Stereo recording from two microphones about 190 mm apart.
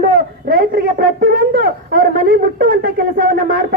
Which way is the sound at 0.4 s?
50° right (ahead or behind).